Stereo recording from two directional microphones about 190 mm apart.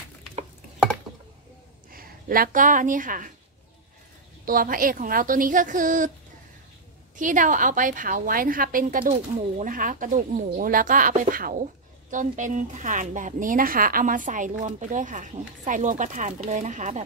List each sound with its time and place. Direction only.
1.9 s speech: 50° right (ahead or behind)
4.5 s a woman's voice: 45° right (ahead or behind)
7.2 s a woman's voice: 45° right (ahead or behind)